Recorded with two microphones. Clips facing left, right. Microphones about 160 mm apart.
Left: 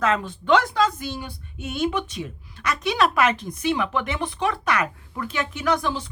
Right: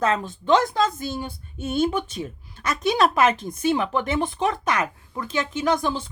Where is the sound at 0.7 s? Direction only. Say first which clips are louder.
Even; 40° right (ahead or behind).